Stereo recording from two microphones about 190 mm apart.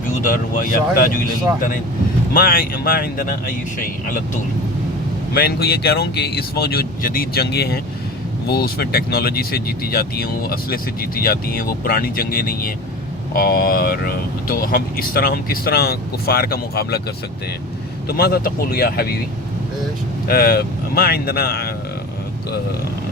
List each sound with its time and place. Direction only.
0.3 s speech: 45° left (ahead or behind)
2.3 s speech: 50° left (ahead or behind)
5.3 s speech: 55° left (ahead or behind)
18.1 s speech: 55° left (ahead or behind)
20.2 s speech: 50° left (ahead or behind)